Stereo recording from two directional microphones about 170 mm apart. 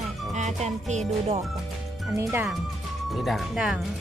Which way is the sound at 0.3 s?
45° right (ahead or behind).